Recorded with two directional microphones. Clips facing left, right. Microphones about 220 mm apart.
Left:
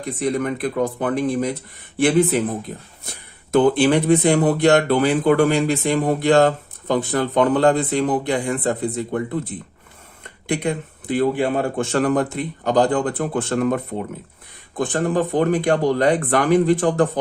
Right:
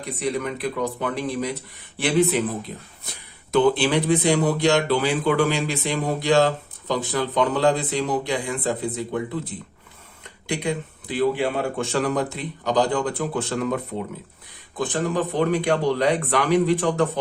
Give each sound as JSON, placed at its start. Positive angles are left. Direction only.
{"t": 0.0, "sound": "speech", "side_deg": 50}
{"t": 10.4, "sound": "speech", "side_deg": 55}